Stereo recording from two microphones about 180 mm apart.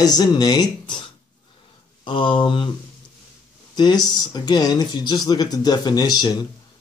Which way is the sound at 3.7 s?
25° left (ahead or behind).